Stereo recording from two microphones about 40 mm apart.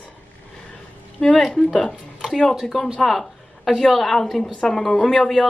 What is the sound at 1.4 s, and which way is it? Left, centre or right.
A woman's voice, centre.